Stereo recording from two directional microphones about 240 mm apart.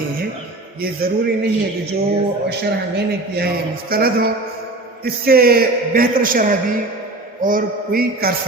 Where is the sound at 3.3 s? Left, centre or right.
Right.